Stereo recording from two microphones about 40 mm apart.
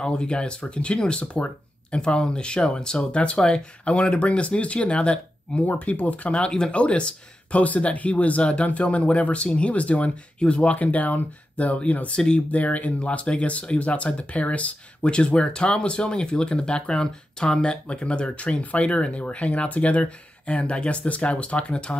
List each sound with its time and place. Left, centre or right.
0.0 s speech: left
5.7 s speech: left
6.3 s speech: left